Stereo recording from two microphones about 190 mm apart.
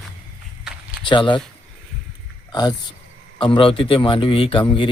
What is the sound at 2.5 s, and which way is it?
A man's voice, 20° left (ahead or behind).